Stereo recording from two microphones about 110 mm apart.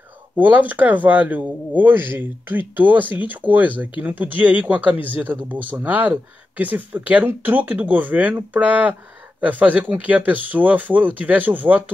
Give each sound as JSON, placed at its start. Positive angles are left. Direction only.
{"t": 0.4, "sound": "speech", "side_deg": -15}